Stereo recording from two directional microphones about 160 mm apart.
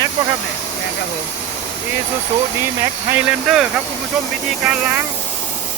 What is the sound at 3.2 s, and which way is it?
Speech, 5° right (ahead or behind).